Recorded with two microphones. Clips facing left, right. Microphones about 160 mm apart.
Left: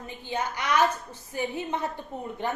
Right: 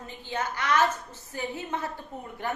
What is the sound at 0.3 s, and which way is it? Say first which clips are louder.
A woman's voice: even; 15° left (ahead or behind).